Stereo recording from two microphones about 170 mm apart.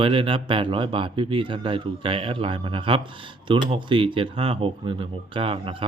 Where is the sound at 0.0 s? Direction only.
30° right (ahead or behind).